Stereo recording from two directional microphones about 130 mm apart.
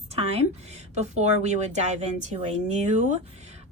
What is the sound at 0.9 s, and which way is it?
A woman's voice, 60° right (ahead or behind).